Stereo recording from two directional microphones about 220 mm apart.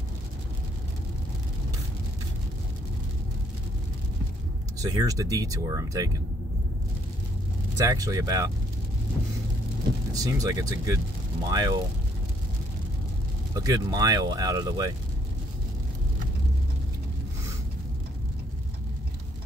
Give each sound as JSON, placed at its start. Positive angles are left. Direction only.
{"t": 4.7, "sound": "speech", "side_deg": -15}
{"t": 7.7, "sound": "speech", "side_deg": -15}
{"t": 10.1, "sound": "speech", "side_deg": -15}
{"t": 13.6, "sound": "speech", "side_deg": -15}